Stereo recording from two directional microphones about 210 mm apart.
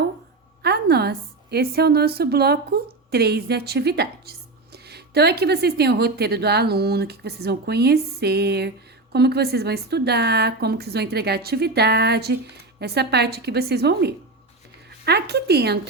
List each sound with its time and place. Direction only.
0.6 s a woman's voice: 50° right (ahead or behind)